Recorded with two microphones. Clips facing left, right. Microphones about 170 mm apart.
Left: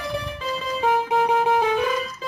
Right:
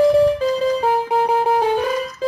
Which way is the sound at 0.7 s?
35° right (ahead or behind).